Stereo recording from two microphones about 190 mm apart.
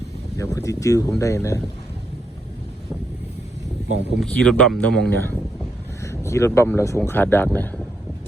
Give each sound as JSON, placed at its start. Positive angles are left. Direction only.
{"t": 0.3, "sound": "speech", "side_deg": 15}
{"t": 4.2, "sound": "speech", "side_deg": 5}
{"t": 6.0, "sound": "speech", "side_deg": 15}